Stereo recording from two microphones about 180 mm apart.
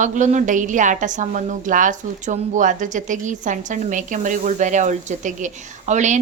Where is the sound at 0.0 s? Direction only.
45° right (ahead or behind).